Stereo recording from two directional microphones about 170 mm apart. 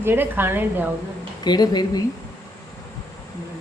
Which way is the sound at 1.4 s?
25° left (ahead or behind).